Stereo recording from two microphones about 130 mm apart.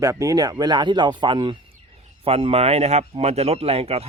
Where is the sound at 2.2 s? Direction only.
50° right (ahead or behind).